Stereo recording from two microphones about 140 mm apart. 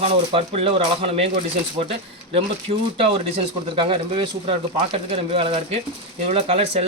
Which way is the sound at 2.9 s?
40° right (ahead or behind).